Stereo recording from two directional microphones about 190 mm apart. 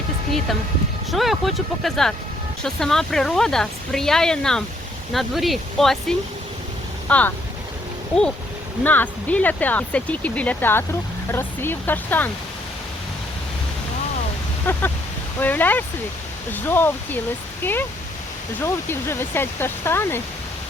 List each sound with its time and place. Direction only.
1.1 s speech: centre (ahead or behind)
8.8 s speech: 10° left (ahead or behind)
14.7 s speech: 10° left (ahead or behind)